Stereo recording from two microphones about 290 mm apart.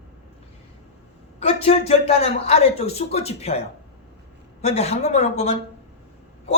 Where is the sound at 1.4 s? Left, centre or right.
Centre.